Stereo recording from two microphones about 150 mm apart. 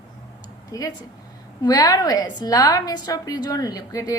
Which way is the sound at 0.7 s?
25° left (ahead or behind).